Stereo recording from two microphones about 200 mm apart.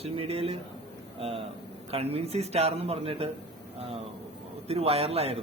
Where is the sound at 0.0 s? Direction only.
30° right (ahead or behind).